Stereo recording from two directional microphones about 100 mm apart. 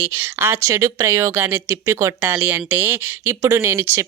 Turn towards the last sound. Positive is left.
turn(degrees=-25)  # may be behind; listen again after turning